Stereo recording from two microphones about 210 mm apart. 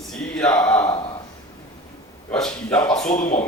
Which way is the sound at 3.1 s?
35° left (ahead or behind).